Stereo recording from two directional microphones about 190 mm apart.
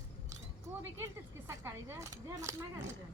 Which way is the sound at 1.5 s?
15° right (ahead or behind).